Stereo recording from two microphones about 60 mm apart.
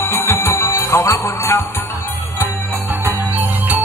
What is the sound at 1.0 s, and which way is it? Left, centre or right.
Music, left.